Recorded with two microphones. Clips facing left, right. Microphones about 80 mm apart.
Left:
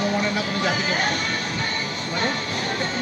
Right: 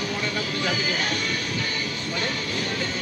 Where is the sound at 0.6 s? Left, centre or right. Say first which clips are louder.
Left 3 dB; left.